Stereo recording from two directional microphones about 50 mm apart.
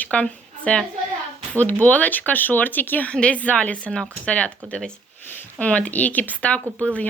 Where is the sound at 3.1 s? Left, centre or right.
Left.